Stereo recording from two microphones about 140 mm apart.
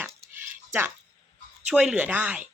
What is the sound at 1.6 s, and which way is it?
Speech, 5° right (ahead or behind).